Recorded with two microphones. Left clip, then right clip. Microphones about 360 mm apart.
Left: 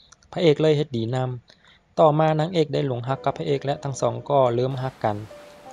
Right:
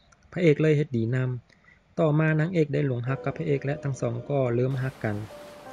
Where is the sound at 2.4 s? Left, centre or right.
Left.